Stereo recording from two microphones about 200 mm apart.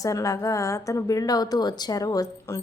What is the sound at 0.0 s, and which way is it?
A woman's voice, 15° left (ahead or behind).